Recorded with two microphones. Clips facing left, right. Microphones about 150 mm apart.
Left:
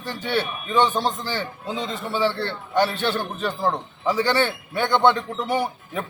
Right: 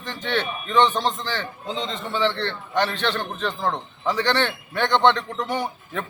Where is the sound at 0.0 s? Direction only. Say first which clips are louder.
Left 1 dB; 10° left (ahead or behind).